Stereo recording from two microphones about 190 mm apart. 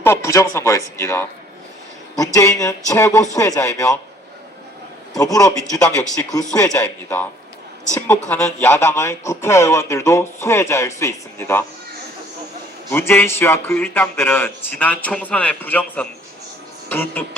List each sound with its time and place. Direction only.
0.0 s a man's voice: 15° left (ahead or behind)
5.1 s a man's voice: 20° left (ahead or behind)
12.9 s a man's voice: 10° left (ahead or behind)